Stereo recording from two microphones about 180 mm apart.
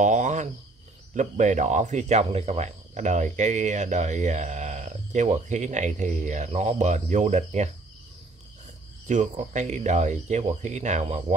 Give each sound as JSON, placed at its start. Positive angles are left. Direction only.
{"t": 0.0, "sound": "speech", "side_deg": -45}
{"t": 9.0, "sound": "speech", "side_deg": -40}